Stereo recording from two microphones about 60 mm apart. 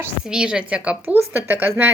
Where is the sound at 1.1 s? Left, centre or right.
Right.